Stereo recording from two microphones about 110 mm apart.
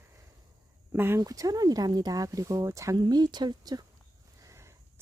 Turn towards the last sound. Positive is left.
turn(degrees=-25)  # may be behind; listen again after turning